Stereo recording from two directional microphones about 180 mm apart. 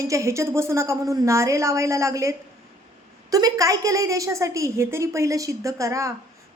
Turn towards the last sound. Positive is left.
turn(degrees=-15)  # may be behind; listen again after turning